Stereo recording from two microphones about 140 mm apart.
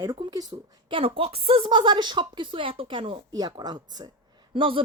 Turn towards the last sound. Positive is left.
turn(degrees=-40)  # may be behind; listen again after turning